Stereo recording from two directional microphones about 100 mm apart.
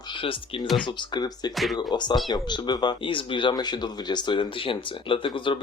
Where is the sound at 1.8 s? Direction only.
45° left (ahead or behind).